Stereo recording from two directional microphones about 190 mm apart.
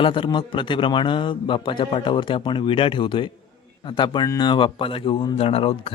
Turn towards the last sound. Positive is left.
turn(degrees=30)  # may be behind; listen again after turning